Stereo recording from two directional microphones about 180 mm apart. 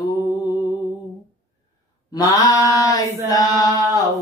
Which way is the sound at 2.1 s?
20° left (ahead or behind).